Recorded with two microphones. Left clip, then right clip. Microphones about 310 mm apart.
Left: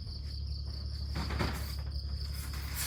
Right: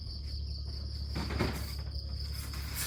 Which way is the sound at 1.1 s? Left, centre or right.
Left.